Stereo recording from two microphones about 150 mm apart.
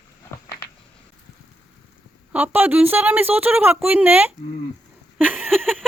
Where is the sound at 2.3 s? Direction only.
10° right (ahead or behind).